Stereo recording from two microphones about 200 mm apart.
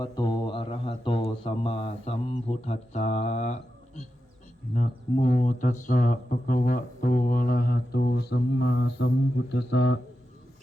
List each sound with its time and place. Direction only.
0.0 s speech: 20° left (ahead or behind); by 10.0 s 65° left (ahead or behind)